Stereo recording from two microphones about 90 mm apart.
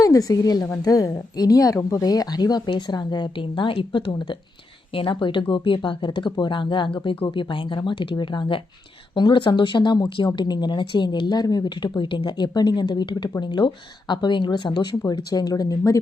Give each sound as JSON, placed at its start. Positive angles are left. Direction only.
{"t": 0.0, "sound": "a woman's voice", "side_deg": 40}